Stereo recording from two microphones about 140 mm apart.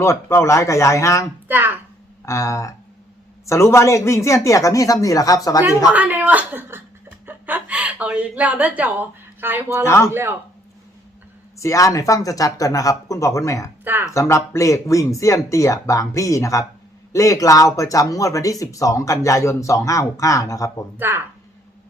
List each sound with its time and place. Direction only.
0.0 s speech: 20° left (ahead or behind)
1.5 s speech: 15° right (ahead or behind)
2.2 s speech: 20° left (ahead or behind)
5.9 s speech: 10° right (ahead or behind)
9.8 s speech: 20° left (ahead or behind)
10.1 s speech: 15° right (ahead or behind)
11.5 s speech: 20° left (ahead or behind)
13.8 s speech: 15° right (ahead or behind)
14.1 s speech: 20° left (ahead or behind)